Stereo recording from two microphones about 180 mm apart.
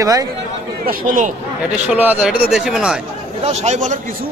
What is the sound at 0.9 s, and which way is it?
Speech, 50° right (ahead or behind).